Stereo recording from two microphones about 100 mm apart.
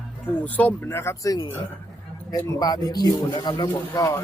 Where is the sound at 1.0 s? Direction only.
25° left (ahead or behind).